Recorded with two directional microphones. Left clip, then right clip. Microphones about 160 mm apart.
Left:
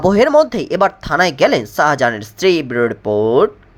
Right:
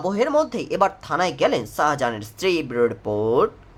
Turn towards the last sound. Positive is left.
turn(degrees=20)  # may be behind; listen again after turning